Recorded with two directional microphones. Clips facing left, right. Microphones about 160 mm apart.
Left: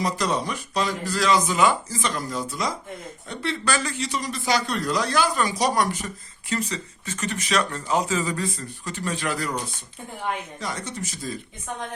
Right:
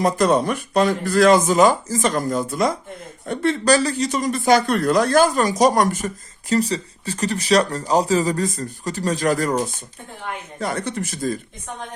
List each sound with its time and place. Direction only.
0.0 s speech: 55° right (ahead or behind)
6.5 s speech: 35° right (ahead or behind)
10.6 s speech: 55° right (ahead or behind)